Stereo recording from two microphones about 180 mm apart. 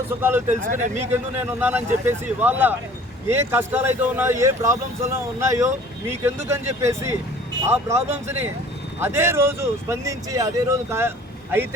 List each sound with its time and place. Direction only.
0.1 s speech: 10° right (ahead or behind)
0.6 s speech: 45° right (ahead or behind)
1.1 s speech: 10° right (ahead or behind)